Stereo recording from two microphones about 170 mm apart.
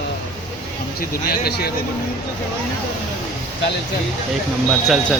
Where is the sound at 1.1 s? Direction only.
65° left (ahead or behind).